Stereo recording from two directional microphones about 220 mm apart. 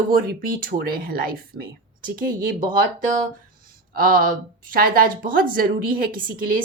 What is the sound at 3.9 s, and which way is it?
Speech, 40° right (ahead or behind).